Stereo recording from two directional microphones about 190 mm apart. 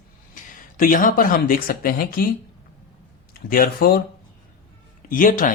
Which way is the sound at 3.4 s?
50° left (ahead or behind).